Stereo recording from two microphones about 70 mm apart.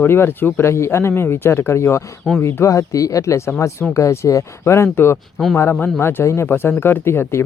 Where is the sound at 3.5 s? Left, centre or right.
Left.